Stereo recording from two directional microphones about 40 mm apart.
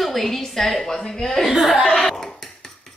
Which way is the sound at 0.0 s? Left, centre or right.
Centre.